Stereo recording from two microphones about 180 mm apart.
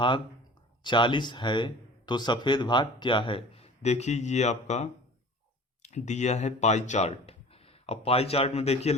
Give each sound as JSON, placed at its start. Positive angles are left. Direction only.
{"t": 0.9, "sound": "speech", "side_deg": 25}